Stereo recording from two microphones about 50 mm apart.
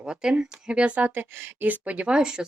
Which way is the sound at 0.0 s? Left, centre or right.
Centre.